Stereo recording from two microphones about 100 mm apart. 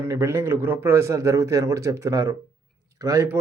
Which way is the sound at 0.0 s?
25° right (ahead or behind).